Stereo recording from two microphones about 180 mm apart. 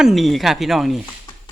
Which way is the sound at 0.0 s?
Centre (ahead or behind).